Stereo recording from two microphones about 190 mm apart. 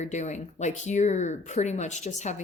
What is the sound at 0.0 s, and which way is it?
Speech, 40° left (ahead or behind).